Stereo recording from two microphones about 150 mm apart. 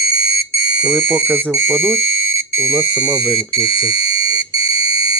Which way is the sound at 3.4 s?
25° right (ahead or behind).